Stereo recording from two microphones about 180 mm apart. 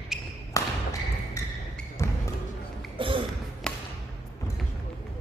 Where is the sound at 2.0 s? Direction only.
15° left (ahead or behind).